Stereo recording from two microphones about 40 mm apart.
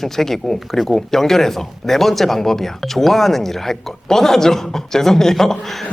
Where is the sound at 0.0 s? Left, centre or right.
Centre.